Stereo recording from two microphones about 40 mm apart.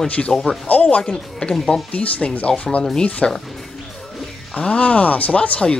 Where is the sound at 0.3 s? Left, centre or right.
Centre.